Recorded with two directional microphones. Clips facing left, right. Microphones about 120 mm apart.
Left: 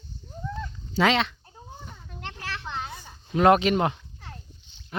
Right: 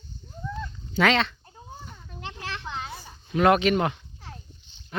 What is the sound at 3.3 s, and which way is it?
Speech, 30° left (ahead or behind).